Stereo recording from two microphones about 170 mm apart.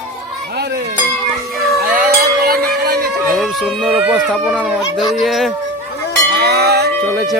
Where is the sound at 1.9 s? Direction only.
55° right (ahead or behind).